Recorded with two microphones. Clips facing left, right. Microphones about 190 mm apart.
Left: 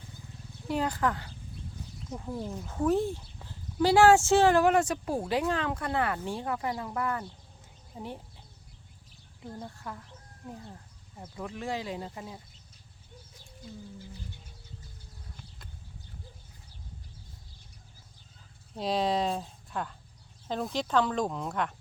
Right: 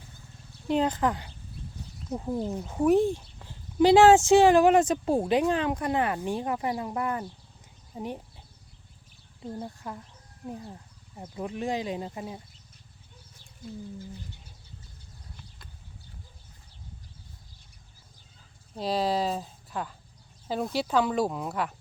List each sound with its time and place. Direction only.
0.7 s speech: 20° right (ahead or behind)
9.4 s speech: 20° right (ahead or behind)
11.3 s speech: 20° right (ahead or behind)
18.8 s speech: centre (ahead or behind)